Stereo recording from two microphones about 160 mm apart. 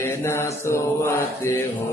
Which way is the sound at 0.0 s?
15° left (ahead or behind).